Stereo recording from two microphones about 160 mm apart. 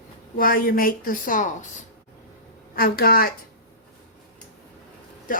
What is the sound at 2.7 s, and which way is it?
Speech, 70° left (ahead or behind).